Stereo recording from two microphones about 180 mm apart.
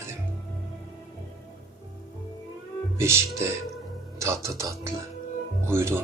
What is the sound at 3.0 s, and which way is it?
Speech, 15° right (ahead or behind).